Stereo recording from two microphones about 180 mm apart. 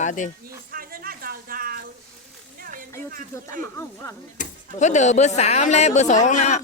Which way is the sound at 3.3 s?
15° left (ahead or behind).